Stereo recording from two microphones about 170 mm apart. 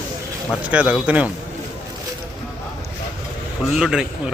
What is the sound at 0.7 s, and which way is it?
Speech, 5° right (ahead or behind).